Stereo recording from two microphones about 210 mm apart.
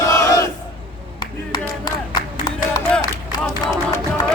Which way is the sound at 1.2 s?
20° left (ahead or behind).